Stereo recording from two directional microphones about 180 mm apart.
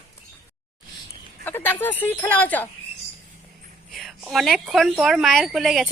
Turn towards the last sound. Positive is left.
turn(degrees=0)  # may be behind; listen again after turning